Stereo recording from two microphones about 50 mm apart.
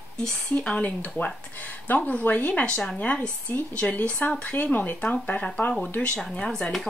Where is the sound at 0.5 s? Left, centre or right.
Left.